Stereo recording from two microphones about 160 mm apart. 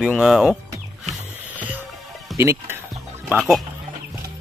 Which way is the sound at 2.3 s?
15° right (ahead or behind).